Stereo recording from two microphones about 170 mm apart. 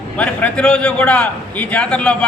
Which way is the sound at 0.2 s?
10° left (ahead or behind).